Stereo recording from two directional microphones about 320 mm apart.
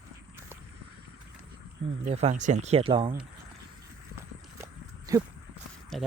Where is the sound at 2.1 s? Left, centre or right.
Right.